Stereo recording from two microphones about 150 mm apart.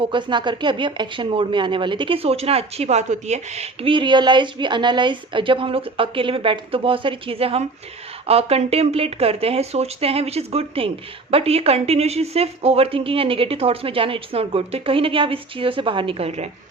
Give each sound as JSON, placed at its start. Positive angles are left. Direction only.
{"t": 0.0, "sound": "speech", "side_deg": -30}